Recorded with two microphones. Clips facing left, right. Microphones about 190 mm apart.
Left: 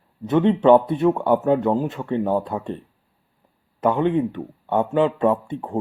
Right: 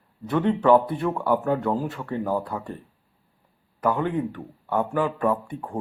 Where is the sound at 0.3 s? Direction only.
20° left (ahead or behind).